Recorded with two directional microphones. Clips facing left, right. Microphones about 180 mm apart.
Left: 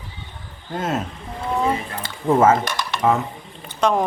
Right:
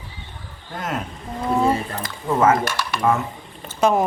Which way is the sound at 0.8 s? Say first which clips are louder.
Left 3 dB; 25° left (ahead or behind).